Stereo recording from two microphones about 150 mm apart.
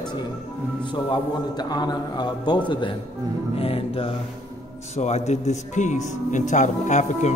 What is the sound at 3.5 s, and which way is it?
Speech, 40° left (ahead or behind).